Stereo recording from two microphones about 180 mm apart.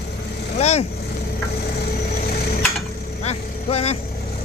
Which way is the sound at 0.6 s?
35° left (ahead or behind).